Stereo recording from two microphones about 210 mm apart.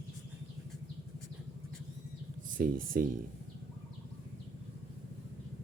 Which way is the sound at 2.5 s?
40° right (ahead or behind).